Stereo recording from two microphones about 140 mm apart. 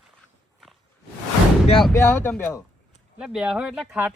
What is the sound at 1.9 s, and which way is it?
Speech, 15° left (ahead or behind).